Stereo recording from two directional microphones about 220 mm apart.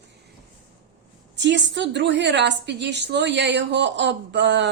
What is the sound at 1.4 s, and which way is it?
Speech, 55° right (ahead or behind).